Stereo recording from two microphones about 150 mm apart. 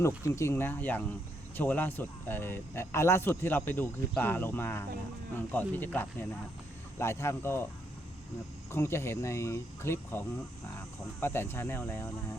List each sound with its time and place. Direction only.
0.2 s speech: 20° left (ahead or behind)
8.7 s speech: 15° left (ahead or behind)